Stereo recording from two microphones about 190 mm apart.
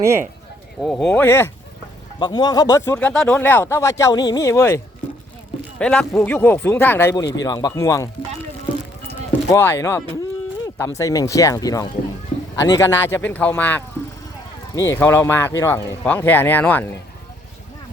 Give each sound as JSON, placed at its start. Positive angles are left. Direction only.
{"t": 0.8, "sound": "speech", "side_deg": 0}
{"t": 1.0, "sound": "speech", "side_deg": 10}
{"t": 2.1, "sound": "speech", "side_deg": 25}
{"t": 5.8, "sound": "speech", "side_deg": 5}
{"t": 9.5, "sound": "speech", "side_deg": 15}